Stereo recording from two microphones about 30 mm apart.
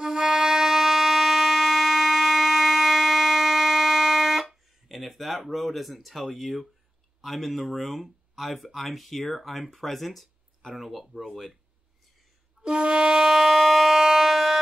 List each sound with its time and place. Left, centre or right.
0.0 s music: centre
7.2 s speech: centre
12.6 s music: right
13.3 s siren: centre